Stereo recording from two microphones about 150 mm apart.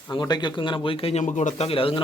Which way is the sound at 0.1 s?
30° left (ahead or behind).